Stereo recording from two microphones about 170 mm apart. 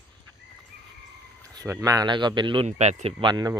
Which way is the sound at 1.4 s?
20° right (ahead or behind).